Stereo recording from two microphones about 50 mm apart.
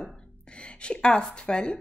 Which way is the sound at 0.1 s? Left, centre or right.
Left.